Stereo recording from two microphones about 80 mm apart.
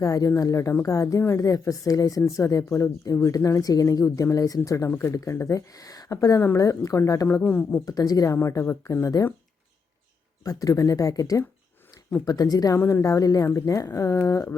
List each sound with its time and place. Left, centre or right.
0.0 s speech: left
7.3 s speech: left
7.9 s speech: left
8.4 s speech: left
10.4 s speech: left
12.7 s speech: left